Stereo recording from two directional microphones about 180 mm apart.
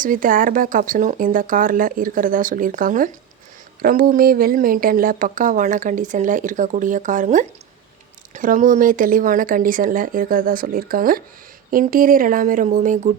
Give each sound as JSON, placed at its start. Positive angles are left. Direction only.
{"t": 0.0, "sound": "speech", "side_deg": -50}